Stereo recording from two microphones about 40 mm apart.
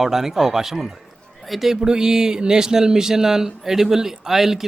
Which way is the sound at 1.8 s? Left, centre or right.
Centre.